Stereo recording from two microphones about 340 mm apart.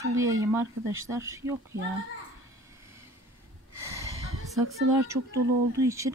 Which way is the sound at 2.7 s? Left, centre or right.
Centre.